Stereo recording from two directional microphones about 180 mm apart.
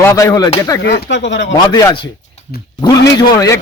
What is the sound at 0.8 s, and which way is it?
Speech, 80° left.